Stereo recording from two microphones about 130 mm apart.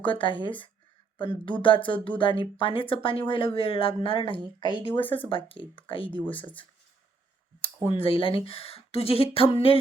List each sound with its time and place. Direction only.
0.0 s speech: 40° left (ahead or behind)
7.6 s speech: 45° left (ahead or behind)